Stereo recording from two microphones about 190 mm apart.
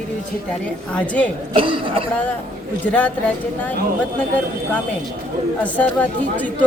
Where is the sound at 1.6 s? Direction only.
25° right (ahead or behind).